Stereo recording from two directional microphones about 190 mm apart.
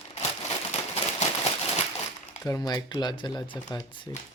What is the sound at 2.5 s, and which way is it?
Speech, 20° left (ahead or behind).